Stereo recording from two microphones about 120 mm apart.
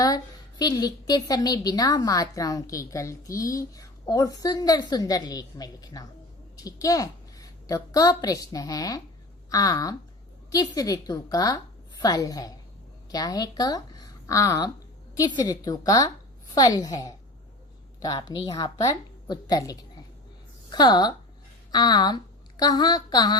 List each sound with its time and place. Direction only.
0.6 s a woman's voice: 30° left (ahead or behind)